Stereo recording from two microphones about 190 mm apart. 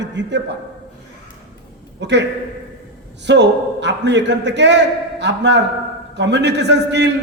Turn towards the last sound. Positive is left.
turn(degrees=-65)  # may be behind; listen again after turning